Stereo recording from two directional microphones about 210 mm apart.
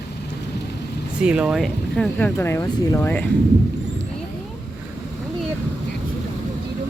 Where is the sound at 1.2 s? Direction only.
5° right (ahead or behind).